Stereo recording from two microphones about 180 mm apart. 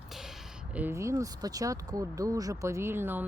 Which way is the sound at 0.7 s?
10° right (ahead or behind).